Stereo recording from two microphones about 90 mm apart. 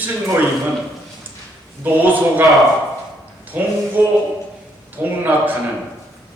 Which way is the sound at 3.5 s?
20° right (ahead or behind).